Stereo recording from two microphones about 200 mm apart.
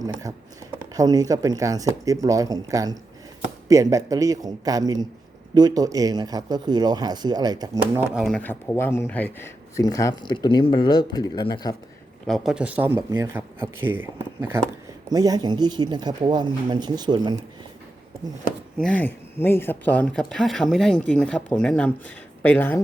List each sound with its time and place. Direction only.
0.9 s speech: 20° right (ahead or behind)
8.1 s speech: centre (ahead or behind); by 11.5 s 20° left (ahead or behind)
12.2 s speech: centre (ahead or behind); by 17.3 s 20° right (ahead or behind)
18.8 s speech: 5° left (ahead or behind)